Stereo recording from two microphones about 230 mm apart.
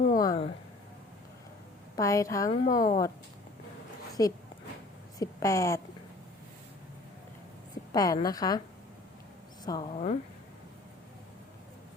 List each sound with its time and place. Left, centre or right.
0.2 s speech: left
2.0 s a woman's voice: centre
2.6 s speech: left
4.2 s a woman's voice: centre
7.9 s a woman's voice: centre
9.6 s a woman's voice: centre
9.9 s speech: left